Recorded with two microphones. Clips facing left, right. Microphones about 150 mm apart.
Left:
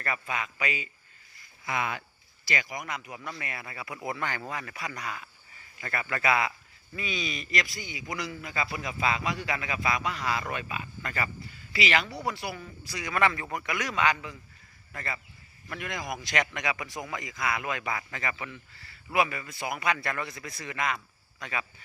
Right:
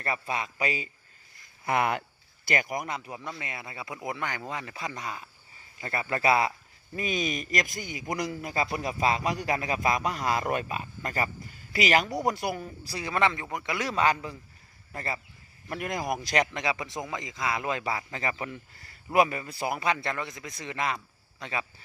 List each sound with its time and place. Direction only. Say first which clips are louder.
0.0 s speech: right 2 dB; 30° right (ahead or behind)
1.6 s speech: right 6 dB; 55° right (ahead or behind)
2.8 s a man's voice: right 2 dB; 30° right (ahead or behind)
6.9 s a man's voice: right 5 dB; 45° right (ahead or behind)
12.8 s a man's voice: even; 35° right (ahead or behind)